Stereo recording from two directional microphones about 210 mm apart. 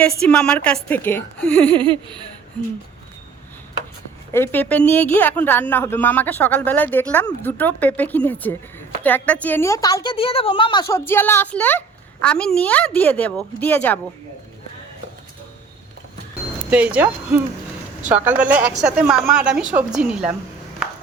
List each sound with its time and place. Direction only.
0.0 s a woman's voice: 5° left (ahead or behind)
1.7 s a sound: 20° right (ahead or behind)
4.3 s a woman's voice: 10° left (ahead or behind)
16.6 s a woman's voice: 5° right (ahead or behind)